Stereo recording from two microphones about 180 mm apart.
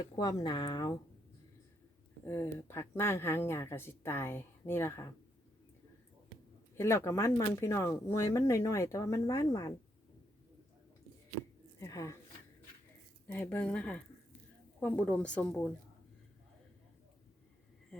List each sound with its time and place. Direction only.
0.0 s speech: 20° left (ahead or behind)
2.2 s speech: 15° left (ahead or behind)
6.7 s speech: 15° left (ahead or behind)
11.8 s speech: 15° left (ahead or behind)
13.2 s speech: 10° left (ahead or behind)